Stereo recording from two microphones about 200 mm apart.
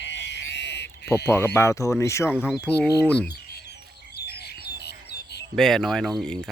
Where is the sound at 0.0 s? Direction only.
60° left (ahead or behind).